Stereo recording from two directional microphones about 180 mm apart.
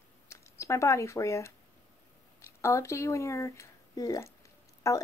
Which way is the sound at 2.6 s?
15° left (ahead or behind).